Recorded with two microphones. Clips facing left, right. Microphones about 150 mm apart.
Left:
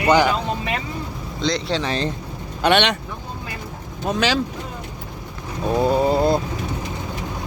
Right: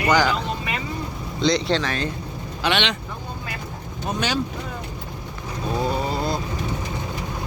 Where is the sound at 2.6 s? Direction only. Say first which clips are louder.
Left 6 dB; 55° left (ahead or behind).